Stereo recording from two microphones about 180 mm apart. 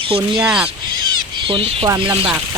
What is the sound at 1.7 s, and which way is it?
Speech, 25° right (ahead or behind).